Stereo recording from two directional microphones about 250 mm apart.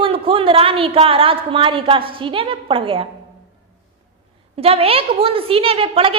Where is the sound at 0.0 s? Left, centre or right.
Right.